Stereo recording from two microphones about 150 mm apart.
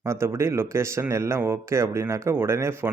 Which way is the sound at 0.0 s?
20° right (ahead or behind).